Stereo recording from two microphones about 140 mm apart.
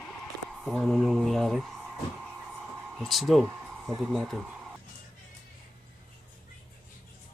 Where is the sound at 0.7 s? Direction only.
Centre (ahead or behind).